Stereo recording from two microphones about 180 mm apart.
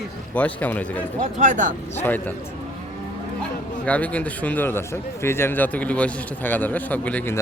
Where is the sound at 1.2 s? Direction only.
45° right (ahead or behind).